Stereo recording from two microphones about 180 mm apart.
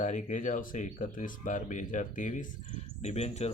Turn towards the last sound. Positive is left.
turn(degrees=35)  # may be behind; listen again after turning